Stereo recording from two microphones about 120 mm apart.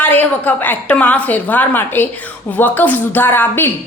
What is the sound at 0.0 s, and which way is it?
A woman's voice, 15° left (ahead or behind).